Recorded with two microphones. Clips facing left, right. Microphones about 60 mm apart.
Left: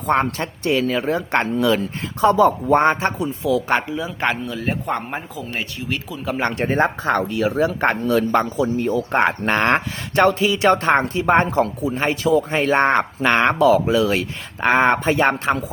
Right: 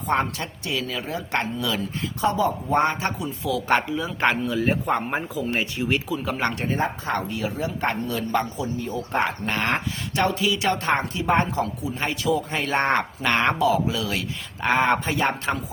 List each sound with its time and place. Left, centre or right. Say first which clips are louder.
0.1 s speech: left 5 dB; left
2.3 s speech: left 8 dB; left
2.7 s speech: left 5 dB; left
3.7 s speech: left 1 dB; centre
6.7 s speech: left 6 dB; left
9.5 s speech: left 7 dB; left
13.6 s speech: left 7 dB; left
15.0 s speech: left 6 dB; left